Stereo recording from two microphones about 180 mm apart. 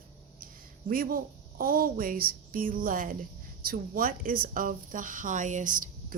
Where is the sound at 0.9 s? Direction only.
50° right (ahead or behind).